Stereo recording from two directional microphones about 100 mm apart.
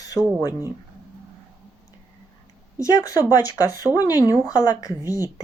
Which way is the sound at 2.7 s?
35° left (ahead or behind).